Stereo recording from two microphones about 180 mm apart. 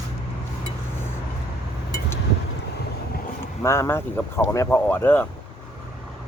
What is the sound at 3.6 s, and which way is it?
Speech, 15° left (ahead or behind).